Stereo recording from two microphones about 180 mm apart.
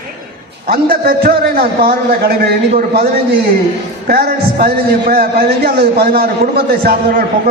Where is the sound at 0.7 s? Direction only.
55° right (ahead or behind).